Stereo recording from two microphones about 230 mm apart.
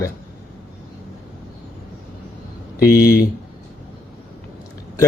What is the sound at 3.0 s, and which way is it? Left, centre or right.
Speech, left.